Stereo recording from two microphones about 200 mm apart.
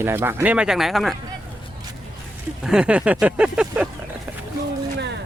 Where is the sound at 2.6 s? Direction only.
5° right (ahead or behind).